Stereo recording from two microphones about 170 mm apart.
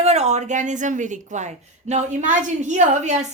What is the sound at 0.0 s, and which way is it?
Speech, 40° right (ahead or behind).